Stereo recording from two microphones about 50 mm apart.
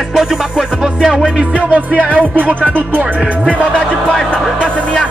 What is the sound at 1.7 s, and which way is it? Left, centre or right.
Music, right.